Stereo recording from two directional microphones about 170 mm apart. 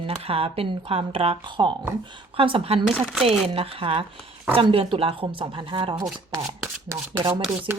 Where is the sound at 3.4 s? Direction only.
35° right (ahead or behind).